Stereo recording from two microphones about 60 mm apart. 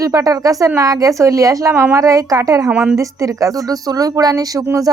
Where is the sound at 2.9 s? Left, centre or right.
Right.